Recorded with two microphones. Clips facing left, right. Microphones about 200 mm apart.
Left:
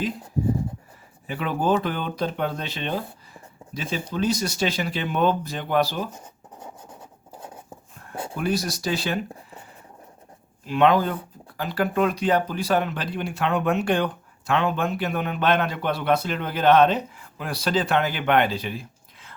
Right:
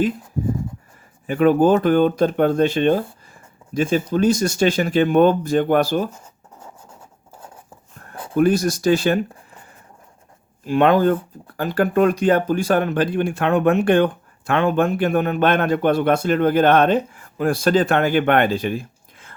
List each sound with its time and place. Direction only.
1.3 s speech: 50° right (ahead or behind)
8.1 s a sound: 30° left (ahead or behind)
8.4 s speech: 50° right (ahead or behind)
10.7 s speech: 50° right (ahead or behind)